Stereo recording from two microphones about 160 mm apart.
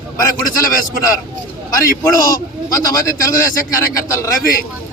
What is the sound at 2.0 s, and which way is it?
A man's voice, 20° left (ahead or behind).